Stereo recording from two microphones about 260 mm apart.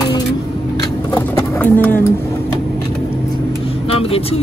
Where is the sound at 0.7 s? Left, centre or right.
Centre.